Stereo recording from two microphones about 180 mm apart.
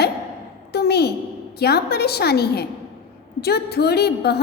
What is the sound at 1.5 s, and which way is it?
A woman's voice, 60° left (ahead or behind).